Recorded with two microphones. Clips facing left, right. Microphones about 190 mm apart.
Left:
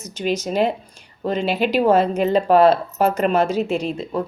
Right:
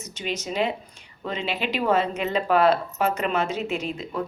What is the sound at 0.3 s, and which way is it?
A woman's voice, 45° left (ahead or behind).